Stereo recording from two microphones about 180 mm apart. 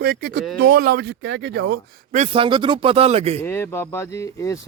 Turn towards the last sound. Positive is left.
turn(degrees=15)  # may be behind; listen again after turning